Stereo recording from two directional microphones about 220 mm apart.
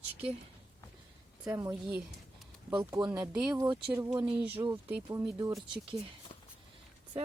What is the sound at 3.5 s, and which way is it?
Speech, 15° right (ahead or behind).